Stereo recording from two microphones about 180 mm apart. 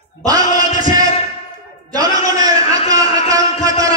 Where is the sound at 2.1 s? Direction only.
20° right (ahead or behind).